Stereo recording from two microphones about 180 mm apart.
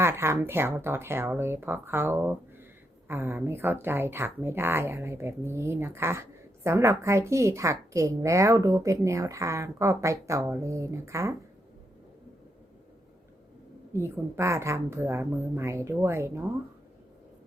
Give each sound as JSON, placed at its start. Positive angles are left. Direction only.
{"t": 0.0, "sound": "a child's voice", "side_deg": -15}
{"t": 13.9, "sound": "a child's voice", "side_deg": -15}